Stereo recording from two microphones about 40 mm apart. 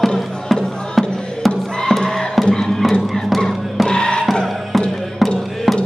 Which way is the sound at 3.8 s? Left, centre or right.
Centre.